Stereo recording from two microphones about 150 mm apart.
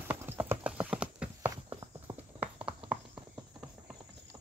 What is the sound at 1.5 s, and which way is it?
Clip-clop, 25° right (ahead or behind).